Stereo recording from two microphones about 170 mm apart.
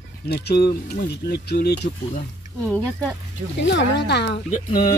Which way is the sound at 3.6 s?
90° left.